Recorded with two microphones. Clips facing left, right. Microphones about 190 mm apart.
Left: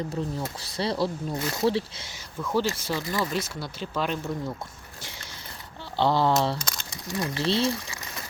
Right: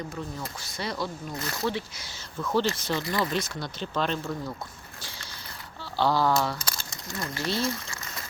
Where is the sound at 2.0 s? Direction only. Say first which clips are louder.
Even; 10° left (ahead or behind).